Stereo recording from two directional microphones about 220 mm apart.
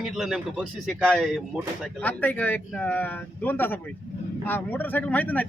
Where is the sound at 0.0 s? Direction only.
Centre (ahead or behind).